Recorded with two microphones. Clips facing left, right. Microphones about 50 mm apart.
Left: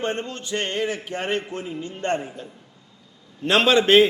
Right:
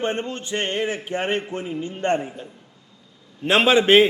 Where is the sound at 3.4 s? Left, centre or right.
Centre.